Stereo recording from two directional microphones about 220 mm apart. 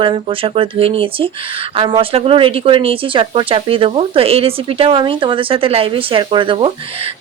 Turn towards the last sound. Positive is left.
turn(degrees=-25)  # may be behind; listen again after turning